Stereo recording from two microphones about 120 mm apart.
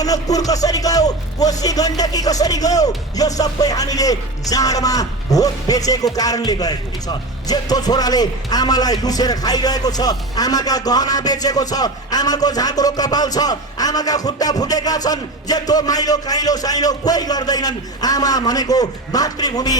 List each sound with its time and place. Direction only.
0.0 s speech: 30° left (ahead or behind)